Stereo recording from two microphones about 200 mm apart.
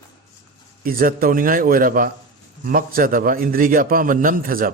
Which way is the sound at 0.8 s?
45° right (ahead or behind).